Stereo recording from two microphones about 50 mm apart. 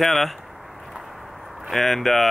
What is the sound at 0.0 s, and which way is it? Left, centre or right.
Speech, centre.